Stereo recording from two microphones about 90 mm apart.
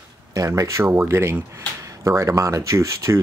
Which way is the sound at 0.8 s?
25° right (ahead or behind).